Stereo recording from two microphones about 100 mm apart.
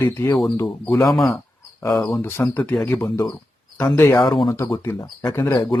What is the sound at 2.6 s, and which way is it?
Speech, 10° left (ahead or behind).